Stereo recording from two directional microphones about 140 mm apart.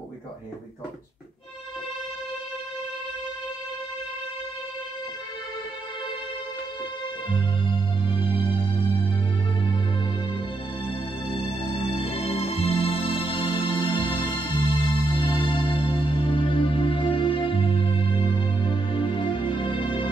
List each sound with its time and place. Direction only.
7.3 s music: 35° left (ahead or behind)
11.9 s music: 45° left (ahead or behind)